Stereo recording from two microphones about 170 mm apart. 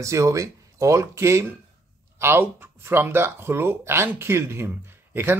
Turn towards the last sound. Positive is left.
turn(degrees=-15)  # may be behind; listen again after turning